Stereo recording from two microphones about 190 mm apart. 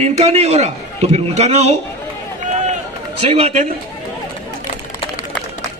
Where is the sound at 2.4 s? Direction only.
35° right (ahead or behind).